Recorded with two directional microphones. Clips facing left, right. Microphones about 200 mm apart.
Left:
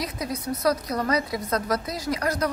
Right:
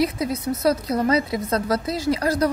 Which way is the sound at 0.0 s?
25° right (ahead or behind).